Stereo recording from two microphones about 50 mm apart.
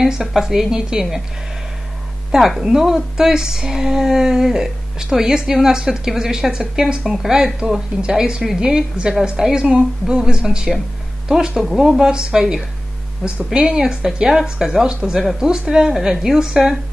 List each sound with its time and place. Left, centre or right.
0.0 s speech: centre
2.3 s speech: centre